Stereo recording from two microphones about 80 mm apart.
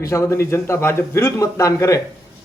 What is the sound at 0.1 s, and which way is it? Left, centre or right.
Speech, left.